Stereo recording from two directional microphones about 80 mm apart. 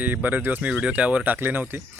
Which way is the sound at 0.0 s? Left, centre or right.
Right.